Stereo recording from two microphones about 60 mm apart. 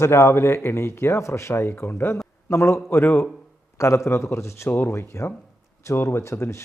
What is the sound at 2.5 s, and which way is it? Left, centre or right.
A man's voice, left.